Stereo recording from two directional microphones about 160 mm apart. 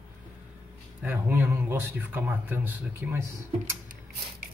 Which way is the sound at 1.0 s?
10° right (ahead or behind).